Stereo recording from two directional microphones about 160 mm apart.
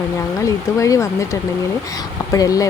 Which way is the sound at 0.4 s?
20° left (ahead or behind).